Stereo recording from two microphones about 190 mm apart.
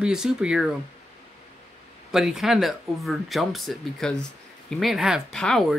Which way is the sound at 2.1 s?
Centre (ahead or behind).